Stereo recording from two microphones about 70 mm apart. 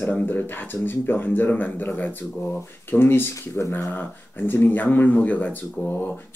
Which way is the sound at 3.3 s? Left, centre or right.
Left.